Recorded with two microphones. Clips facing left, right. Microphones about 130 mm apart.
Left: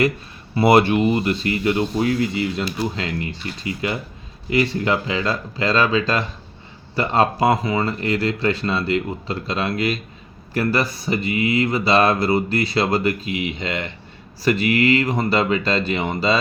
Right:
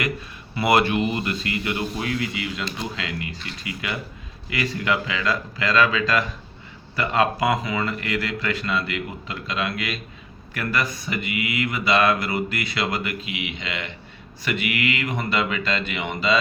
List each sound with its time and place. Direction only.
0.5 s speech: 30° left (ahead or behind)